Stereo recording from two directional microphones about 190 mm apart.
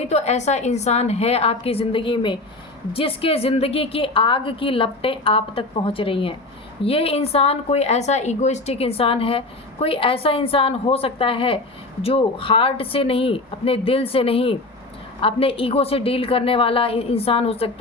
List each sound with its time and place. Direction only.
0.0 s a woman's voice: 35° left (ahead or behind)